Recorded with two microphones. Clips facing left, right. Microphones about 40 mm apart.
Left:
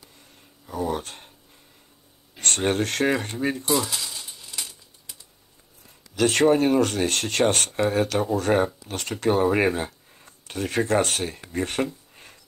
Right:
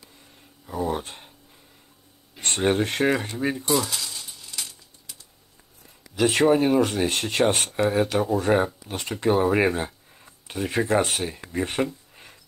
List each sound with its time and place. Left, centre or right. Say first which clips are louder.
0.7 s speech: even; centre
2.3 s a sound: left 1 dB; centre
2.7 s speech: right 1 dB; centre
3.6 s coin: even; centre
6.1 s speech: even; centre